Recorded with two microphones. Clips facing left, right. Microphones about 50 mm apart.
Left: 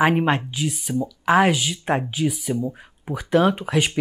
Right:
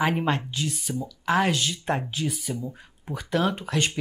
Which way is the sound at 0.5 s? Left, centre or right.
Centre.